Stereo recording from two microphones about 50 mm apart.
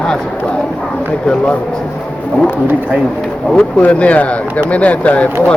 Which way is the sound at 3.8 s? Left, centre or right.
Left.